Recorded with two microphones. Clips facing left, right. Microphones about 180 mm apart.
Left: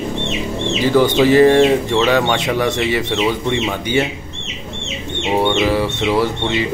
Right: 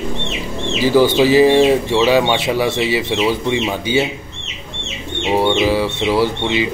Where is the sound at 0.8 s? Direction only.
5° right (ahead or behind).